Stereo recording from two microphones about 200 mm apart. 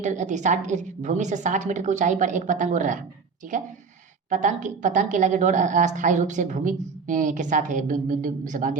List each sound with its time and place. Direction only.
0.0 s a woman's voice: 35° right (ahead or behind)
4.3 s a woman's voice: 40° right (ahead or behind)